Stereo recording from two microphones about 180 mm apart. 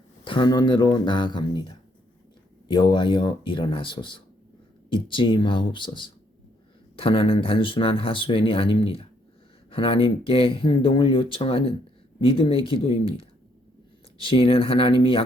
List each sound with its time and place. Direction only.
0.3 s speech: 25° left (ahead or behind)